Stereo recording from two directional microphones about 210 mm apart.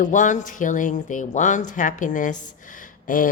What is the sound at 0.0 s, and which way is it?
Speech, 35° left (ahead or behind).